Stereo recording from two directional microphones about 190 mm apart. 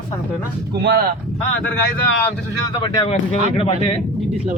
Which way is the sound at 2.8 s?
25° left (ahead or behind).